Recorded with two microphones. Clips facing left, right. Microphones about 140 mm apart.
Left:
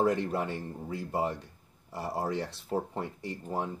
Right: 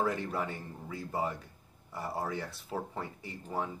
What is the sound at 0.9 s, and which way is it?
Speech, 65° left (ahead or behind).